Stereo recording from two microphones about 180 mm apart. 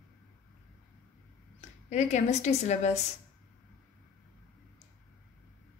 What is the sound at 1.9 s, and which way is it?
A woman's voice, 40° left (ahead or behind).